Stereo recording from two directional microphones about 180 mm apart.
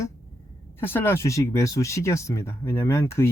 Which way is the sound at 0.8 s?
10° left (ahead or behind).